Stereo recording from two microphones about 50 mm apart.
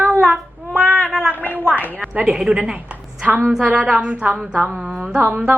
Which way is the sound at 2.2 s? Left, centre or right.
Centre.